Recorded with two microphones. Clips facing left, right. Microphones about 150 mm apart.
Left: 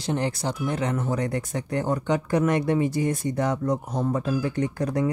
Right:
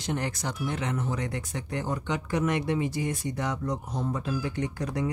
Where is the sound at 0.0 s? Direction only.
30° left (ahead or behind).